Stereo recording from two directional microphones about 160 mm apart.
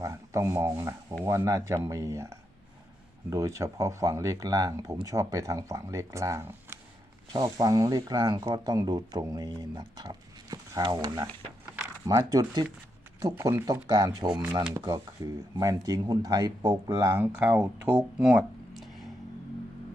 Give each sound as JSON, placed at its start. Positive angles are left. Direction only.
{"t": 0.0, "sound": "speech", "side_deg": -20}